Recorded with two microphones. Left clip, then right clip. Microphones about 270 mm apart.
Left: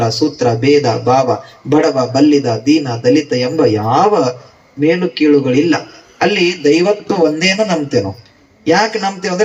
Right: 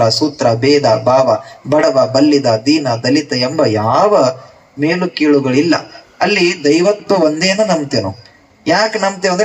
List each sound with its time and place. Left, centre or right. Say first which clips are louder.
0.0 s a man's voice: right 2 dB; centre